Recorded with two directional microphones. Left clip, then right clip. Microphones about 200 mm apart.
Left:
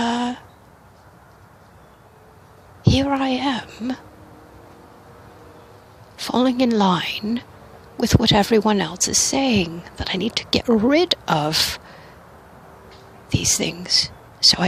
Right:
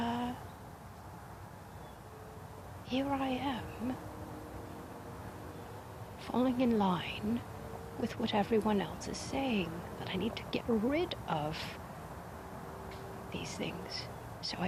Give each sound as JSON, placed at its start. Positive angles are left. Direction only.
{"t": 0.0, "sound": "a sound", "side_deg": 50}
{"t": 2.8, "sound": "a woman's voice", "side_deg": 50}
{"t": 6.1, "sound": "speech", "side_deg": 50}
{"t": 13.3, "sound": "speech", "side_deg": 50}